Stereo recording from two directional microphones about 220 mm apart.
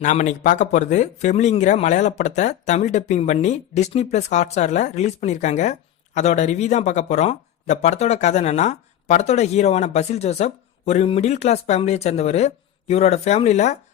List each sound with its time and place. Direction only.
0.0 s speech: 35° left (ahead or behind)